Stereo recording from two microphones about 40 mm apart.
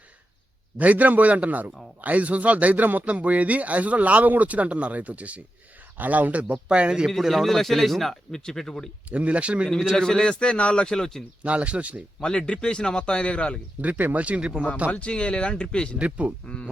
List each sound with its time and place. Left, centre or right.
0.8 s speech: right
3.1 s speech: right
6.5 s speech: right
7.2 s speech: centre
7.4 s speech: centre
9.0 s speech: right
9.9 s speech: centre
10.4 s a man's voice: left
11.4 s speech: right
12.2 s a man's voice: left
13.8 s speech: right
14.8 s a man's voice: left
16.0 s speech: right